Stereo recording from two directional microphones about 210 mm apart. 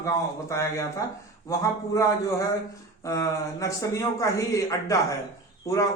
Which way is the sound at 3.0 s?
15° left (ahead or behind).